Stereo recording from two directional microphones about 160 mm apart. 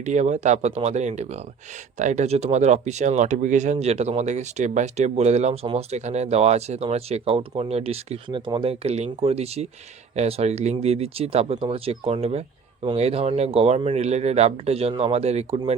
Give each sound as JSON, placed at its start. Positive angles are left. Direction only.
{"t": 0.0, "sound": "speech", "side_deg": -50}